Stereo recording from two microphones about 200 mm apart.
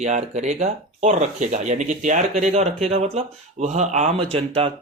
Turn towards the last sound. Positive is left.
turn(degrees=-30)  # may be behind; listen again after turning